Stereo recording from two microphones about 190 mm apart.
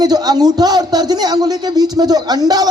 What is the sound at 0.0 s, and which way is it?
Speech, 20° right (ahead or behind).